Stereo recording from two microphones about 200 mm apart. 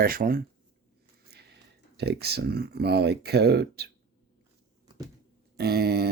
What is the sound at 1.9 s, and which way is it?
Speech, 55° right (ahead or behind).